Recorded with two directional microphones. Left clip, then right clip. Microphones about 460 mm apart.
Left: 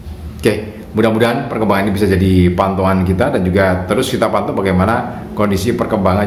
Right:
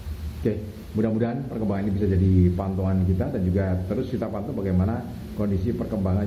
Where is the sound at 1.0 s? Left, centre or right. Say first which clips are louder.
Left 13 dB; centre.